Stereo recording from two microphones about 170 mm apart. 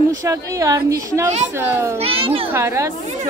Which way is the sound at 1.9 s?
35° right (ahead or behind).